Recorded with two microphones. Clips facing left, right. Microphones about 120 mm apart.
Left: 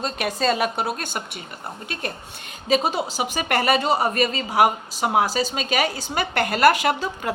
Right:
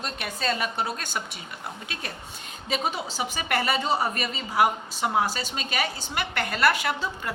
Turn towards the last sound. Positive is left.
turn(degrees=90)